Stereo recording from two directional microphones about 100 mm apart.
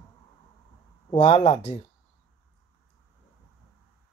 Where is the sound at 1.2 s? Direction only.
70° left (ahead or behind).